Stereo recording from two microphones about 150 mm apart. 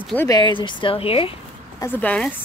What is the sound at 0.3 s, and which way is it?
Speech, 30° left (ahead or behind).